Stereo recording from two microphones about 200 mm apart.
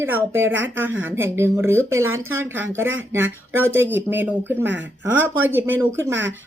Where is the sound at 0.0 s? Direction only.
10° right (ahead or behind).